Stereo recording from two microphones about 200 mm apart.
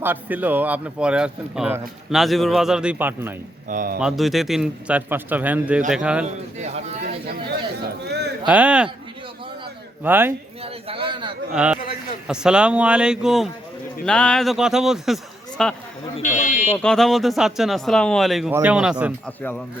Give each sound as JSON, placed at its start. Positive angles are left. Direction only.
{"t": 0.0, "sound": "speech", "side_deg": -10}
{"t": 3.7, "sound": "speech", "side_deg": -45}
{"t": 4.0, "sound": "speech", "side_deg": 0}
{"t": 7.3, "sound": "a sound", "side_deg": -55}
{"t": 8.4, "sound": "speech", "side_deg": -5}
{"t": 10.0, "sound": "speech", "side_deg": -10}
{"t": 10.6, "sound": "a man's voice", "side_deg": -30}
{"t": 11.5, "sound": "speech", "side_deg": -5}
{"t": 16.1, "sound": "buzzer", "side_deg": 40}
{"t": 16.7, "sound": "speech", "side_deg": 5}
{"t": 19.4, "sound": "speech", "side_deg": 10}